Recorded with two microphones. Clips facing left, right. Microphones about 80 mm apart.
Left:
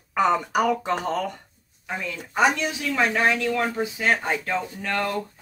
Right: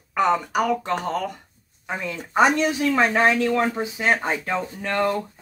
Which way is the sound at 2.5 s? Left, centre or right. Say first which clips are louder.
Right 5 dB; right.